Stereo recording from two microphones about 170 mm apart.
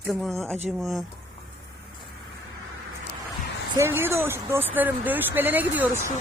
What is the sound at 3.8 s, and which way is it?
Speech, 15° right (ahead or behind).